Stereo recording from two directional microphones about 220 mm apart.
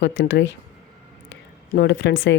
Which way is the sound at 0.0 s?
55° left (ahead or behind).